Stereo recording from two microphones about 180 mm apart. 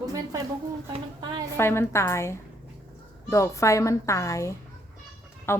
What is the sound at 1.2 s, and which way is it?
Speech, 25° right (ahead or behind).